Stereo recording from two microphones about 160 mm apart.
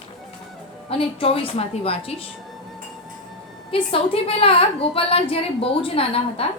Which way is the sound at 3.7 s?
35° left (ahead or behind).